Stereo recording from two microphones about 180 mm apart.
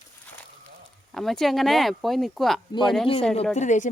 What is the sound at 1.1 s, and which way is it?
Speech, centre (ahead or behind).